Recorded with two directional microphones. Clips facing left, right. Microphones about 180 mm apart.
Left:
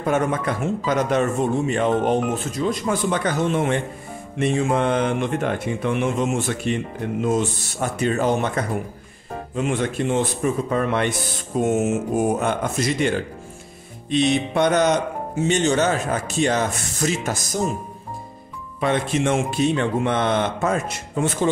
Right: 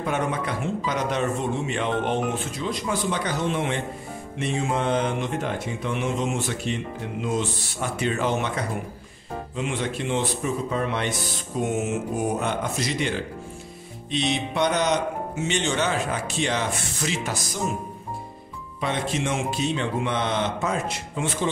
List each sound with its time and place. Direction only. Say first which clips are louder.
0.0 s speech: left 5 dB; 45° left (ahead or behind)
14.1 s speech: left 6 dB; 50° left (ahead or behind)
18.8 s speech: left 5 dB; 55° left (ahead or behind)